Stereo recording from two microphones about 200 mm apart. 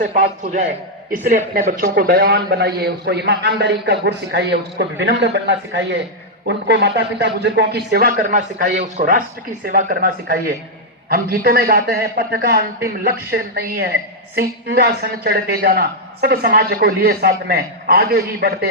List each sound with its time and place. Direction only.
0.0 s a man's voice: 40° right (ahead or behind)